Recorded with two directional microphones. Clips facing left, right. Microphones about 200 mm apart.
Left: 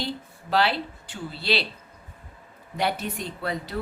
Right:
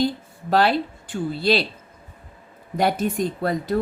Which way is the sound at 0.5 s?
45° right (ahead or behind).